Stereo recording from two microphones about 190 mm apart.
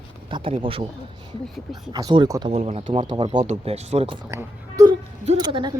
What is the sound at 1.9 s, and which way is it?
Speech, 20° right (ahead or behind).